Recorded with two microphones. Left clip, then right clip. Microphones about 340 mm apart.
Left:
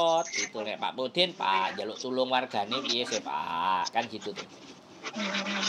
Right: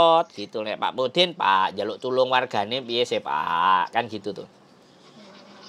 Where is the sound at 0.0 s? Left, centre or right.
Right.